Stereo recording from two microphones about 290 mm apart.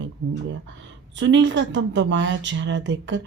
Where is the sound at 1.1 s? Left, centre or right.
Right.